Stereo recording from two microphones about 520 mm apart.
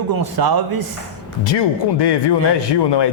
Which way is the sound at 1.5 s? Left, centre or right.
Left.